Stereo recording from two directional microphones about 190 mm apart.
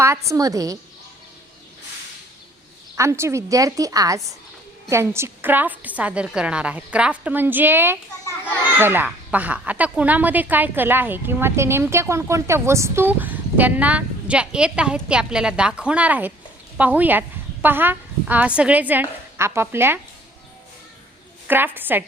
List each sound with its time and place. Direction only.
0.0 s a woman's voice: 15° right (ahead or behind)
2.9 s a woman's voice: 15° right (ahead or behind)
21.4 s a woman's voice: 10° right (ahead or behind)